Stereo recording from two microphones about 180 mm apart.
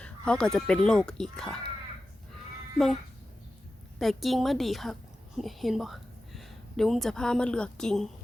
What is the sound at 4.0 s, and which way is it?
A woman's voice, centre (ahead or behind).